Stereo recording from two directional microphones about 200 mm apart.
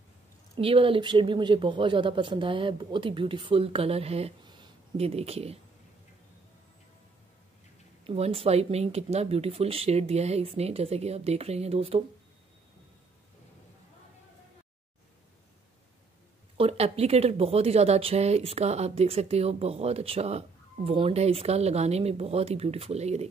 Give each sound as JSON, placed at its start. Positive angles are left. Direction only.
{"t": 0.6, "sound": "speech", "side_deg": -25}
{"t": 8.0, "sound": "speech", "side_deg": -30}
{"t": 16.5, "sound": "speech", "side_deg": -30}